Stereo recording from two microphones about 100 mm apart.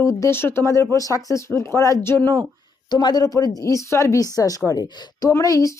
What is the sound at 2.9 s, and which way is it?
Speech, 45° left (ahead or behind).